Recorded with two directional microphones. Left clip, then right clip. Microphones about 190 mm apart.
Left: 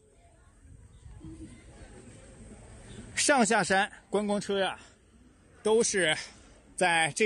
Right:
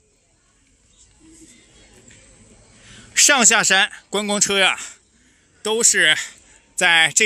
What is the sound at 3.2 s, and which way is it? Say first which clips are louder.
Speech: right 9 dB; 5° left (ahead or behind).